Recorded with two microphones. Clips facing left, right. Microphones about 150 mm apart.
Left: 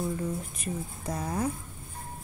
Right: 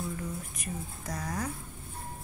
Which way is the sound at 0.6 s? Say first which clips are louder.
Left 4 dB; 25° left (ahead or behind).